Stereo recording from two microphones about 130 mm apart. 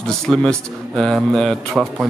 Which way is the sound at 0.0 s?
5° left (ahead or behind).